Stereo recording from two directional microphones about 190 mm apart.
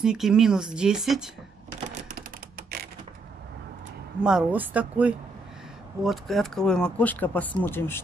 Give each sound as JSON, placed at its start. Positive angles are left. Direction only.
{"t": 0.0, "sound": "speech", "side_deg": -5}
{"t": 2.1, "sound": "a sound", "side_deg": -55}
{"t": 4.2, "sound": "speech", "side_deg": -5}